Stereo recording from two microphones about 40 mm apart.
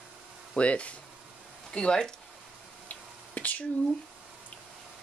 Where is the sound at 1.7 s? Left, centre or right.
Centre.